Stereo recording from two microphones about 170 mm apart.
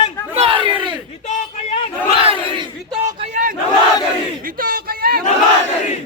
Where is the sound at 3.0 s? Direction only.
45° right (ahead or behind).